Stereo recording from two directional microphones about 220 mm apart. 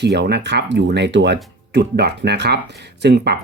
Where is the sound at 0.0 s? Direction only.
50° right (ahead or behind).